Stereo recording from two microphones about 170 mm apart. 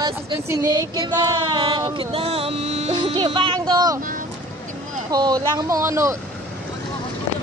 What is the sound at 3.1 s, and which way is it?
Speech, 25° right (ahead or behind).